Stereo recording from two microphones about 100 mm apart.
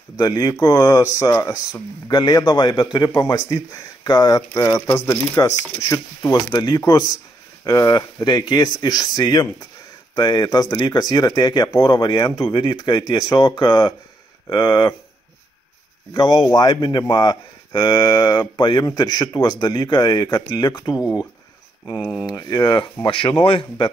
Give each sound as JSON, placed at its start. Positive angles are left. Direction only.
{"t": 0.2, "sound": "speech", "side_deg": 45}
{"t": 6.3, "sound": "speech", "side_deg": 45}
{"t": 16.1, "sound": "speech", "side_deg": 40}
{"t": 22.2, "sound": "speech", "side_deg": 40}
{"t": 23.0, "sound": "speech", "side_deg": 60}